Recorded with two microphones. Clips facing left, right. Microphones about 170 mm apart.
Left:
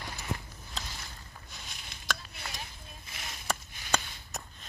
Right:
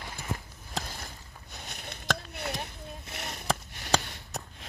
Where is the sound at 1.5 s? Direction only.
60° right (ahead or behind).